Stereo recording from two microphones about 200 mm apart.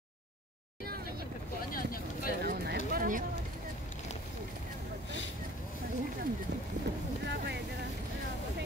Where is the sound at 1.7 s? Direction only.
45° left (ahead or behind).